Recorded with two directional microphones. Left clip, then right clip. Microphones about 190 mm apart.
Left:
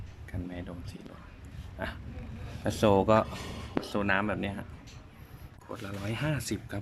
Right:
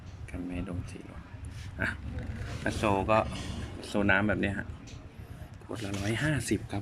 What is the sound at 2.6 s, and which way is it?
Speech, 20° left (ahead or behind).